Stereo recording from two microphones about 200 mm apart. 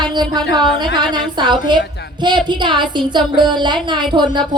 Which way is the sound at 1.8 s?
55° left (ahead or behind).